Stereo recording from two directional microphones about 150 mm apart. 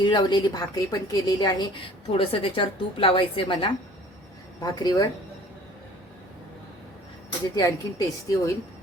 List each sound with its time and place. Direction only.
0.0 s a woman's voice: 30° left (ahead or behind)
7.5 s a woman's voice: 25° left (ahead or behind)